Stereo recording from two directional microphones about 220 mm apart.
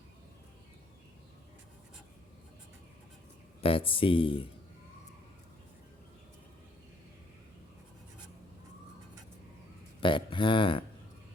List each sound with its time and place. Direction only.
3.6 s speech: 25° left (ahead or behind)
10.0 s speech: 20° left (ahead or behind)